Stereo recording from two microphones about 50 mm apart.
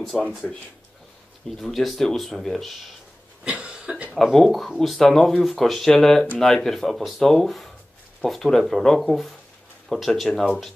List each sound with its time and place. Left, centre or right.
0.1 s speech: centre
1.6 s speech: centre
3.4 s cough: right
4.1 s speech: centre